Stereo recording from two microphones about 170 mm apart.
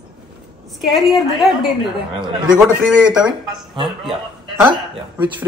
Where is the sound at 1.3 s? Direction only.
Centre (ahead or behind).